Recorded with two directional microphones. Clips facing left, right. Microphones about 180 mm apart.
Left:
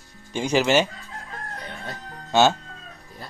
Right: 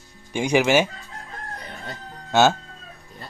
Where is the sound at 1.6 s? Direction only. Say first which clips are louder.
Left 1 dB; 5° right (ahead or behind).